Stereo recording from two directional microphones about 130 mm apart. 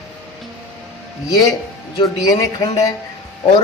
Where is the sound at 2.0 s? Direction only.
30° left (ahead or behind).